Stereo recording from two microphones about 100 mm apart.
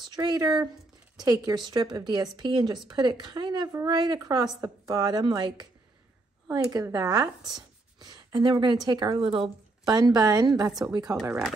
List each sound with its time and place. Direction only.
0.0 s a woman's voice: 45° right (ahead or behind)
9.8 s a woman's voice: 40° right (ahead or behind)